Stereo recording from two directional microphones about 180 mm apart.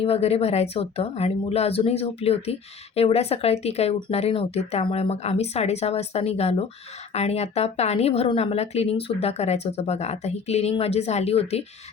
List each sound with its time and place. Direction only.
0.0 s speech: 35° left (ahead or behind)